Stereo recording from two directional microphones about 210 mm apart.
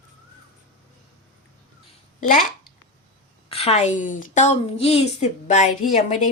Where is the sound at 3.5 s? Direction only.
30° left (ahead or behind).